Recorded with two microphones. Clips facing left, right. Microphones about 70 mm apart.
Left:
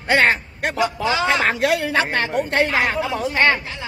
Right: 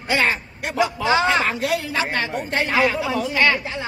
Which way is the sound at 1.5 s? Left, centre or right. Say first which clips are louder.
Left 4 dB; left.